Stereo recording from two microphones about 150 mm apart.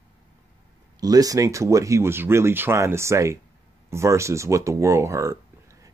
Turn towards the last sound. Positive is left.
turn(degrees=-20)  # may be behind; listen again after turning